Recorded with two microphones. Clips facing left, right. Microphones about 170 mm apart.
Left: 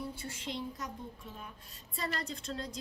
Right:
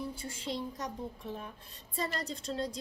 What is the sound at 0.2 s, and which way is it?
A woman's voice, 30° right (ahead or behind).